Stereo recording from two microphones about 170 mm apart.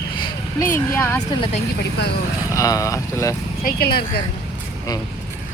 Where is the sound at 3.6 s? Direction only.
65° left (ahead or behind).